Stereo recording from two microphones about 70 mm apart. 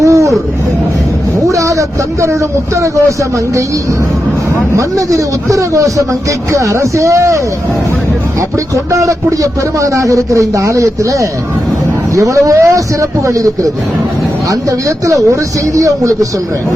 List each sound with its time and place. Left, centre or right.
0.0 s a sound: right
1.4 s vehicle: right
2.2 s a man's voice: right
4.8 s a man's voice: right